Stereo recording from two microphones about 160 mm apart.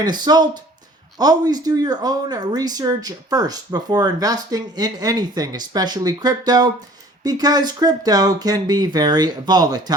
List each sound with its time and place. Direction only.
0.0 s speech: 25° right (ahead or behind)